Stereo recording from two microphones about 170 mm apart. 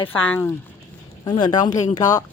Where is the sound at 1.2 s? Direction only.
25° left (ahead or behind).